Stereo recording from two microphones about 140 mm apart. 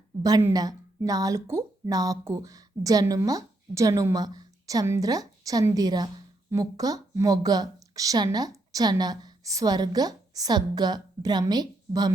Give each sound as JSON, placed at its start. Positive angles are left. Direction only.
{"t": 0.2, "sound": "a woman's voice", "side_deg": -25}